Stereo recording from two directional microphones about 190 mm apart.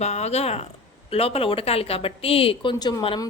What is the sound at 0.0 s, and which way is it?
A woman's voice, 35° left (ahead or behind).